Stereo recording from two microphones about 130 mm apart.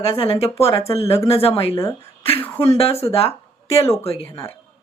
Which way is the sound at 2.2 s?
50° left (ahead or behind).